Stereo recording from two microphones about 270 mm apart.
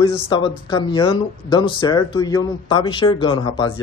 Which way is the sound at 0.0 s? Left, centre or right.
Centre.